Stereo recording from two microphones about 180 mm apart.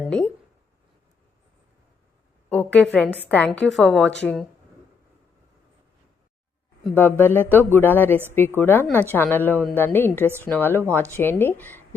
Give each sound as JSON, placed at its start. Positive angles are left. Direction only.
{"t": 0.0, "sound": "a sound", "side_deg": 5}
{"t": 2.5, "sound": "a woman's voice", "side_deg": 10}
{"t": 6.8, "sound": "a woman's voice", "side_deg": 10}